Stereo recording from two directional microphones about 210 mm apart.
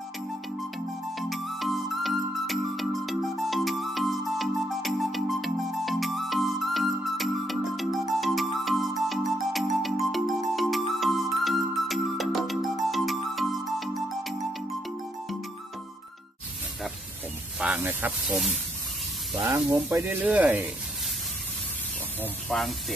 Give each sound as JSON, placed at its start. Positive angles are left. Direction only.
{"t": 1.1, "sound": "music", "side_deg": 0}
{"t": 17.6, "sound": "speech", "side_deg": -10}
{"t": 19.5, "sound": "speech", "side_deg": -10}
{"t": 22.2, "sound": "speech", "side_deg": 0}